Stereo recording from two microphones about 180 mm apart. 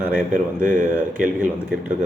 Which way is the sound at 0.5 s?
50° right (ahead or behind).